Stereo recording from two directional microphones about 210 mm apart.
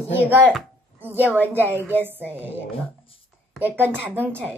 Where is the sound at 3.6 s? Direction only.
10° right (ahead or behind).